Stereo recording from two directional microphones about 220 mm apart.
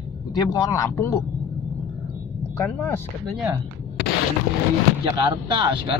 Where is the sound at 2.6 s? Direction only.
10° left (ahead or behind).